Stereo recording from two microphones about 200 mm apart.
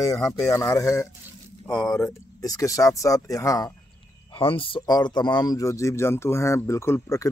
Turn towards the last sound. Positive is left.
turn(degrees=15)  # may be behind; listen again after turning